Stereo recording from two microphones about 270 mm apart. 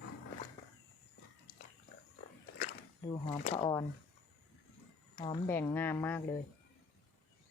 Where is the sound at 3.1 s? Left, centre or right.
Left.